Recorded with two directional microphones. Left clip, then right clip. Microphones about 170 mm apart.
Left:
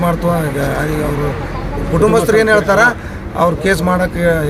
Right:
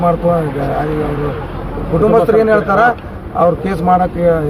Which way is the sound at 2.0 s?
5° left (ahead or behind).